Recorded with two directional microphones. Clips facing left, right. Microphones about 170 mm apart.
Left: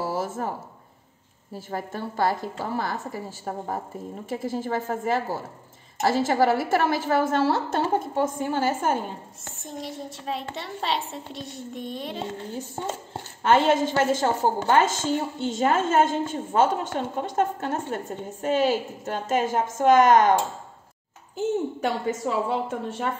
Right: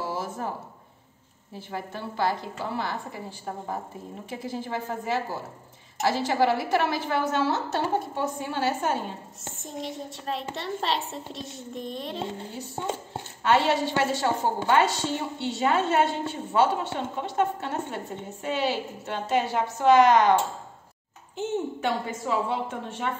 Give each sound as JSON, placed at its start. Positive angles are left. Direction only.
{"t": 1.7, "sound": "a woman's voice", "side_deg": 45}
{"t": 9.6, "sound": "a child's voice", "side_deg": 0}
{"t": 13.5, "sound": "a woman's voice", "side_deg": 45}
{"t": 21.8, "sound": "a woman's voice", "side_deg": 40}